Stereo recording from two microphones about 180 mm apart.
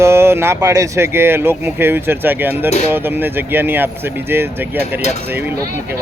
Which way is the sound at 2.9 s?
10° right (ahead or behind).